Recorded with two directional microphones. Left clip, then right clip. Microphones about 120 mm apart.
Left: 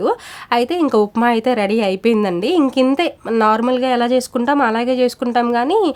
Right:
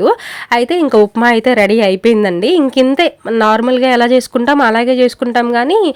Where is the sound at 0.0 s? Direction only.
30° right (ahead or behind).